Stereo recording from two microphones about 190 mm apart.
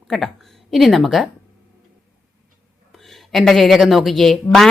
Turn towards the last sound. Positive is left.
turn(degrees=0)  # may be behind; listen again after turning